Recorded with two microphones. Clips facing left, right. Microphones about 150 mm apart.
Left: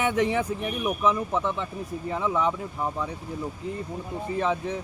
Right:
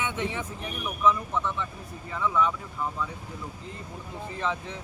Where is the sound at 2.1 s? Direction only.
30° left (ahead or behind).